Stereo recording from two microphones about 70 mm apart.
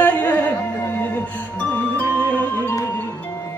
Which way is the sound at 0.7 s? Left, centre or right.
Left.